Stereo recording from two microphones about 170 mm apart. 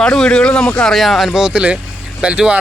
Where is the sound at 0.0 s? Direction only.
5° left (ahead or behind).